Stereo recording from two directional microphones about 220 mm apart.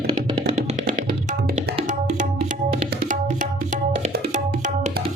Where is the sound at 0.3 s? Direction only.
30° right (ahead or behind).